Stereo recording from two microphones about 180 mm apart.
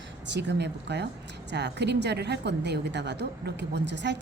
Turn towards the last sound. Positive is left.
turn(degrees=-75)  # may be behind; listen again after turning